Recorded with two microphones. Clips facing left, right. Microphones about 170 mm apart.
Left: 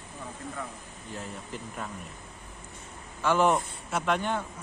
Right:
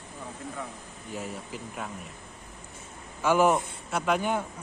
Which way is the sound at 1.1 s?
5° right (ahead or behind).